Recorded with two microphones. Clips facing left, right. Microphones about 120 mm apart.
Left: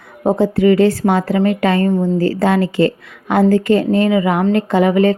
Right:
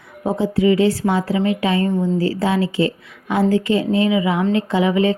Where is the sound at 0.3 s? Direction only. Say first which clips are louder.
Left 4 dB; 55° left (ahead or behind).